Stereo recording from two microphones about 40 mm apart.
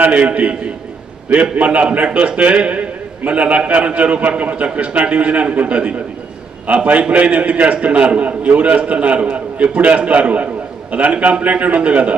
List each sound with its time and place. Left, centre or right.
0.0 s a man's voice: right